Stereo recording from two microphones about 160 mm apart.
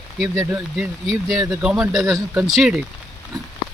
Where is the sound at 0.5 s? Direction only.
5° right (ahead or behind).